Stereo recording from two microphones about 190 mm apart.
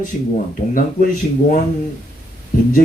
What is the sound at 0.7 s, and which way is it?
Speech, 45° left (ahead or behind).